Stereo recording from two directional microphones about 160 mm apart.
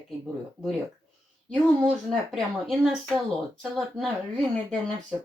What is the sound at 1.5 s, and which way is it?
Speech, centre (ahead or behind).